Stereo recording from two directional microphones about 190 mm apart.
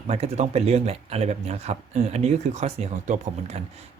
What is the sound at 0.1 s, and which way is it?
Speech, 35° right (ahead or behind).